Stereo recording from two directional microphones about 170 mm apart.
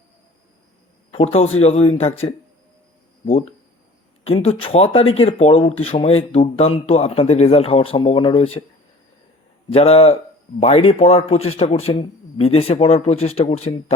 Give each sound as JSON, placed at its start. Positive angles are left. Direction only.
{"t": 1.1, "sound": "speech", "side_deg": 35}
{"t": 4.2, "sound": "speech", "side_deg": 35}
{"t": 9.6, "sound": "speech", "side_deg": 35}